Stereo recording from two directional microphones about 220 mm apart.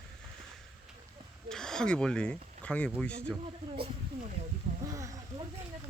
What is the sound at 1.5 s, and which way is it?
Speech, centre (ahead or behind).